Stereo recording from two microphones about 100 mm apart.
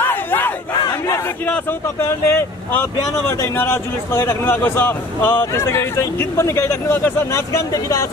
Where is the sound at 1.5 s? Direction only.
20° left (ahead or behind).